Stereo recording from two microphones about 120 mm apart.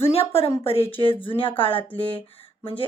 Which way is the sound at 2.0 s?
50° left (ahead or behind).